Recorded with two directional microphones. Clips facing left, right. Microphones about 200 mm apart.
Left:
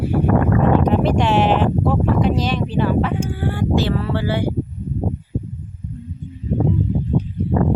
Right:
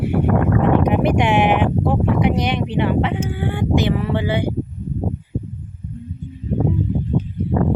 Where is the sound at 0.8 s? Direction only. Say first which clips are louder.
Even; 15° right (ahead or behind).